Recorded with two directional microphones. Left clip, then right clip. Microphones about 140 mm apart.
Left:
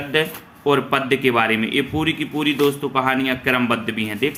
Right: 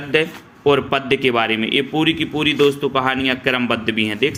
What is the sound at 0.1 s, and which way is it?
Speech, 35° right (ahead or behind).